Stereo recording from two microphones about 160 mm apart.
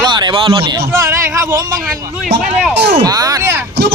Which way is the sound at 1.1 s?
15° right (ahead or behind).